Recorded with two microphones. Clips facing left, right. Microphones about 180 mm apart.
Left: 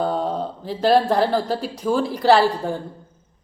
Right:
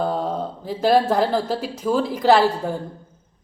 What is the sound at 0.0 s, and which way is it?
A woman's voice, 5° right (ahead or behind).